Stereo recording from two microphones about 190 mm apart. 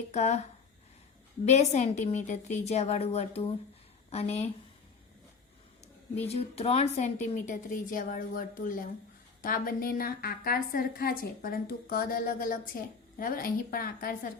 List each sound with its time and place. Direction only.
0.1 s a woman's voice: 35° left (ahead or behind)
1.5 s a woman's voice: 35° left (ahead or behind)
6.2 s a woman's voice: 35° left (ahead or behind); by 14.2 s 50° left (ahead or behind)